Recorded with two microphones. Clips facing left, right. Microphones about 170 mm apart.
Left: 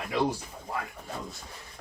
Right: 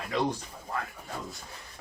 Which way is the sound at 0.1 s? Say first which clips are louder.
Left 1 dB; 10° left (ahead or behind).